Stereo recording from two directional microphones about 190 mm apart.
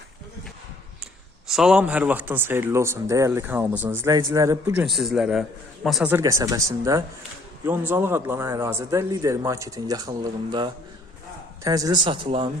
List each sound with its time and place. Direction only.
1.5 s a man's voice: 5° right (ahead or behind)
4.8 s a man's voice: centre (ahead or behind); by 12.5 s 25° right (ahead or behind)